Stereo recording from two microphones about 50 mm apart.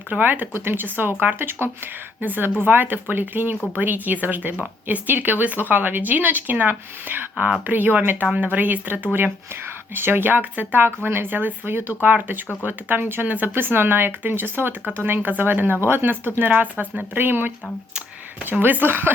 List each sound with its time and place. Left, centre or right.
0.1 s speech: right
18.6 s speech: right